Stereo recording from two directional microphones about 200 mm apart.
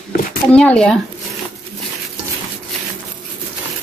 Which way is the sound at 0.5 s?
5° left (ahead or behind).